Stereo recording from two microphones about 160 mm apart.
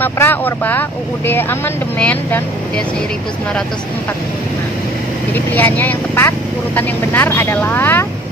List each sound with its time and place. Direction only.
0.0 s speech: 15° left (ahead or behind)
5.3 s speech: 10° left (ahead or behind)